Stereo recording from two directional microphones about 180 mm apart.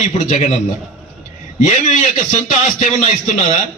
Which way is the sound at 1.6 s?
40° left (ahead or behind).